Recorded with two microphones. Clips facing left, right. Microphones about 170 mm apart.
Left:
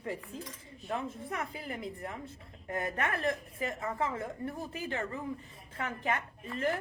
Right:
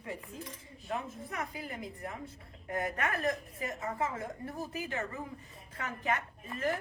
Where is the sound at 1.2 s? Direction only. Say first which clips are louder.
Left 1 dB; 30° left (ahead or behind).